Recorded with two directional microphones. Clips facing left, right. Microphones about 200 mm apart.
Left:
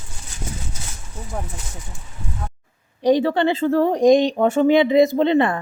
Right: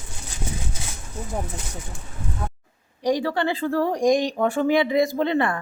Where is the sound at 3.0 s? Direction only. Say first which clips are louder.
Left 6 dB; 25° left (ahead or behind).